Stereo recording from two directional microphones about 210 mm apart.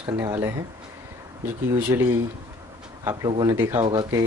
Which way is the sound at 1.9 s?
15° right (ahead or behind).